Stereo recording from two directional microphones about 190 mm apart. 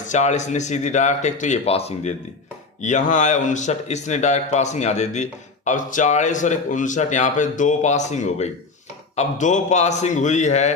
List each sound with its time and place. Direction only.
0.1 s speech: 40° left (ahead or behind)